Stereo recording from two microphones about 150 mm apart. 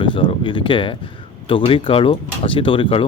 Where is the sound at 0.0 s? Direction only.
35° left (ahead or behind).